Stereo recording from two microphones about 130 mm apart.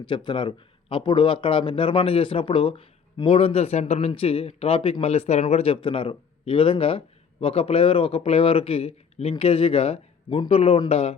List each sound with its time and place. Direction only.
0.0 s speech: 35° left (ahead or behind)